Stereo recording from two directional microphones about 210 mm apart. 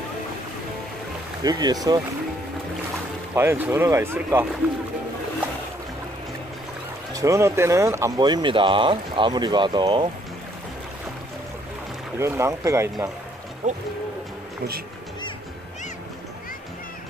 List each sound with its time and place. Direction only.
1.4 s speech: 20° right (ahead or behind)
3.3 s speech: 10° right (ahead or behind)
7.2 s speech: 15° right (ahead or behind)
12.2 s speech: 15° right (ahead or behind)
13.6 s speech: 35° right (ahead or behind)